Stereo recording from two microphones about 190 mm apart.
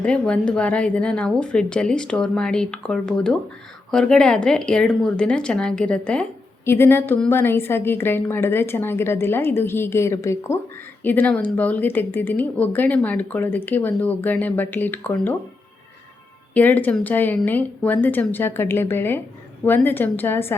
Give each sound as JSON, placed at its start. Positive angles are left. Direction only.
{"t": 0.0, "sound": "speech", "side_deg": 5}
{"t": 16.6, "sound": "speech", "side_deg": 10}